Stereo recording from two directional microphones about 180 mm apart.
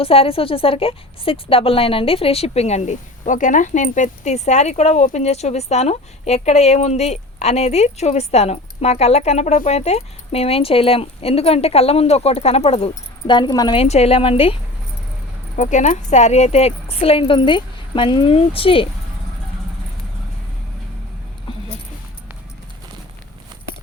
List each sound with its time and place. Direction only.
0.0 s a woman's voice: 30° left (ahead or behind)
13.8 s a woman's voice: 35° left (ahead or behind)
15.5 s a woman's voice: 45° left (ahead or behind)